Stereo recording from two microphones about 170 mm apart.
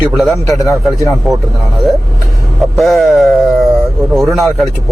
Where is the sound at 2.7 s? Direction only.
Centre (ahead or behind).